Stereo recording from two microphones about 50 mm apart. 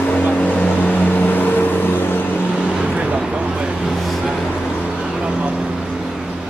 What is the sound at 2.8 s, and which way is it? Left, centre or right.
Vehicle, right.